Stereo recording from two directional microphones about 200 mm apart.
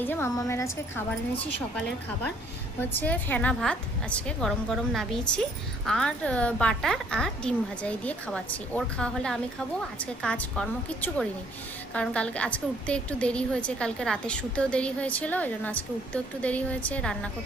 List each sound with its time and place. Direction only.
0.0 s a woman's voice: 10° left (ahead or behind)